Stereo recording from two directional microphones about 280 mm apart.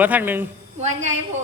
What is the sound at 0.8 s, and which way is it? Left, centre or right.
Speech, right.